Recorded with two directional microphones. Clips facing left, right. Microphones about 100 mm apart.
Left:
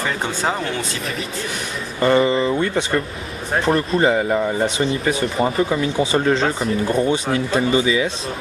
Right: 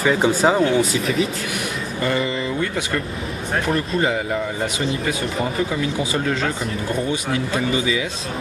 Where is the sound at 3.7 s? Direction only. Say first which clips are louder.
Left 5 dB; 35° left (ahead or behind).